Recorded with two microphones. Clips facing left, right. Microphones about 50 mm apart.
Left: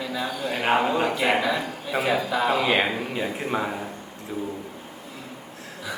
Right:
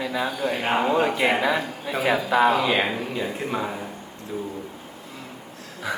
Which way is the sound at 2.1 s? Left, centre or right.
Right.